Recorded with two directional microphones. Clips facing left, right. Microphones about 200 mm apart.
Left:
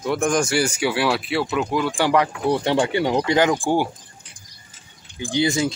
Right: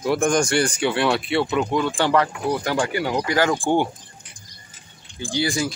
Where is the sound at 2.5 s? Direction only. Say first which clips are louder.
Left 6 dB; 25° left (ahead or behind).